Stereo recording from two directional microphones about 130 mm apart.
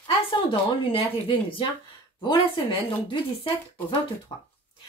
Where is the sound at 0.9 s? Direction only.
45° left (ahead or behind).